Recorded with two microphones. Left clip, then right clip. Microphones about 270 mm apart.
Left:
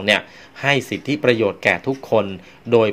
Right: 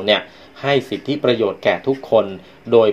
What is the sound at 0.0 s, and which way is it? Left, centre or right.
Speech, left.